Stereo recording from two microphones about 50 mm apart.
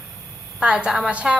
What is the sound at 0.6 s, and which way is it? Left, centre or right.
Speech, right.